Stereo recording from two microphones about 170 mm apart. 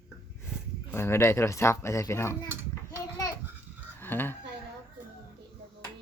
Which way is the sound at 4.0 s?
10° left (ahead or behind).